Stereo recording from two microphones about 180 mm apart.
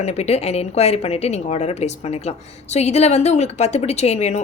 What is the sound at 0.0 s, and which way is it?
A woman's voice, 35° left (ahead or behind).